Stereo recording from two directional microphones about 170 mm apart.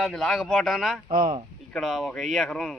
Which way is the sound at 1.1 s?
55° right (ahead or behind).